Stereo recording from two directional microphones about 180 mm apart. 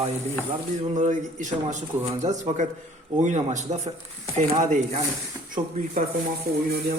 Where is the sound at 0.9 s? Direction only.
45° right (ahead or behind).